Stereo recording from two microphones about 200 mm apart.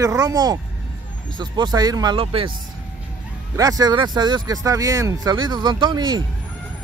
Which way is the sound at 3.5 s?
20° right (ahead or behind).